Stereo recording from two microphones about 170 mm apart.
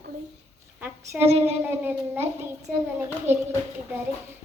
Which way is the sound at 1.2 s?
40° right (ahead or behind).